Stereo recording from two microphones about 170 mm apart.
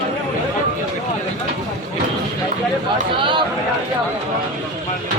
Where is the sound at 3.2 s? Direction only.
30° right (ahead or behind).